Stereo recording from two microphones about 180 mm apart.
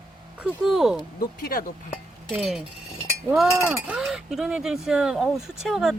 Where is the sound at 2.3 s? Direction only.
5° right (ahead or behind).